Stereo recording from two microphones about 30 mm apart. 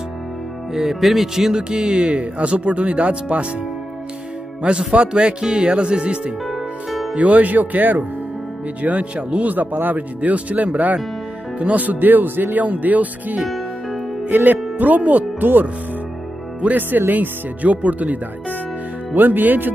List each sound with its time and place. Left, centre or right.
0.7 s speech: centre
1.6 s speech: right
4.6 s speech: right
5.0 s speech: right
6.5 s music: centre
7.2 s speech: right
8.8 s speech: right
9.4 s speech: right
11.5 s speech: right
11.8 s speech: right
14.2 s music: right
14.8 s speech: right
16.7 s speech: right
19.1 s speech: right